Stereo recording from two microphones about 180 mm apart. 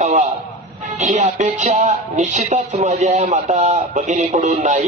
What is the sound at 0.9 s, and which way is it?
A man's voice, 40° right (ahead or behind).